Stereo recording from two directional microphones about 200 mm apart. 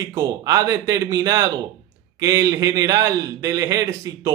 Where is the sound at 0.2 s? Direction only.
15° right (ahead or behind).